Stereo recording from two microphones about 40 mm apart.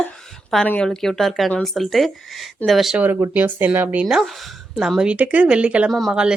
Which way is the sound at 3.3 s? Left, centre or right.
Right.